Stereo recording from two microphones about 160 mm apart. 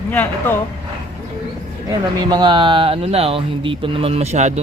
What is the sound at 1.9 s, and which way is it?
Speech, 25° right (ahead or behind).